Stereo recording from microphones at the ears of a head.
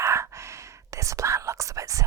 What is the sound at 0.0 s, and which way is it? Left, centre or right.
Whispering, right.